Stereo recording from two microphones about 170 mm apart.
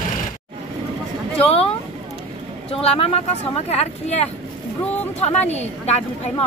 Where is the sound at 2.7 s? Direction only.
35° left (ahead or behind).